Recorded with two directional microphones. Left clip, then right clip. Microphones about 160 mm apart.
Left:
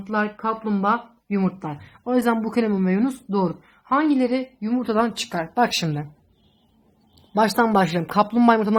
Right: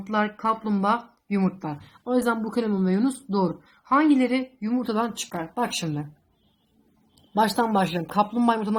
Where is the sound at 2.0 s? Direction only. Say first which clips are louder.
Left 3 dB; 35° left (ahead or behind).